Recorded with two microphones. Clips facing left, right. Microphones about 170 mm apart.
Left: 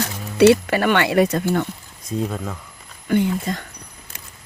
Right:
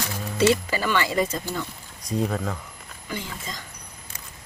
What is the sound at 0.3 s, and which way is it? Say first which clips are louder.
Speech: left 8 dB; 65° left (ahead or behind).